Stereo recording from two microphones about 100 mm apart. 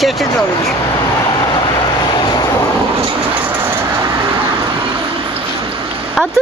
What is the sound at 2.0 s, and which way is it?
Vehicle, 45° left (ahead or behind).